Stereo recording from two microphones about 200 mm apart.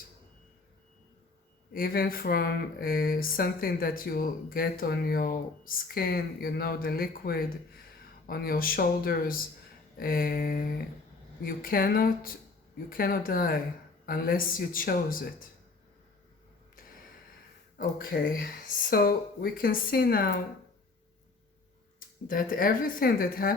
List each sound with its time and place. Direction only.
1.7 s speech: 50° left (ahead or behind)
17.7 s speech: 45° left (ahead or behind)
22.3 s speech: 45° left (ahead or behind)